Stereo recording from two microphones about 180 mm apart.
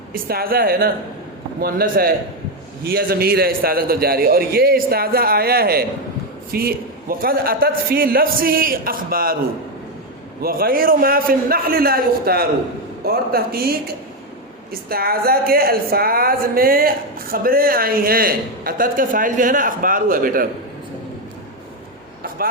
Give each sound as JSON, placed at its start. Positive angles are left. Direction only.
{"t": 0.1, "sound": "a man's voice", "side_deg": -55}
{"t": 10.4, "sound": "a man's voice", "side_deg": -55}